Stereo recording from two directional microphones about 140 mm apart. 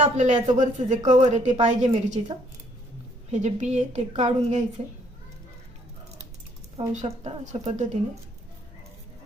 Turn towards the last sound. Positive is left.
turn(degrees=-50)  # may be behind; listen again after turning